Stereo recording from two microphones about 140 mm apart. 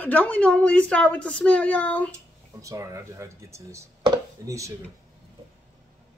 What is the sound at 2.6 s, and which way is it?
Speech, 20° right (ahead or behind).